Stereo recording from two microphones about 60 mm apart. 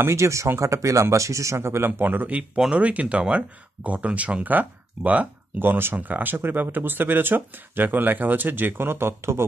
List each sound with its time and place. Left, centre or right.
0.0 s speech: right